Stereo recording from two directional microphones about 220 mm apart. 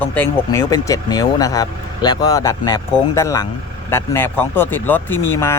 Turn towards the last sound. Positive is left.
turn(degrees=10)  # may be behind; listen again after turning